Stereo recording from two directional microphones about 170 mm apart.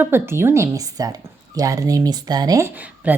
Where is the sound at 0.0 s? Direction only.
15° right (ahead or behind).